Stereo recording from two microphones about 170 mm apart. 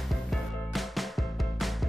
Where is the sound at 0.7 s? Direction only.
Centre (ahead or behind).